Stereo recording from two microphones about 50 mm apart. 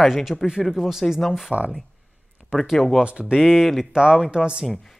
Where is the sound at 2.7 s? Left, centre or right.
Centre.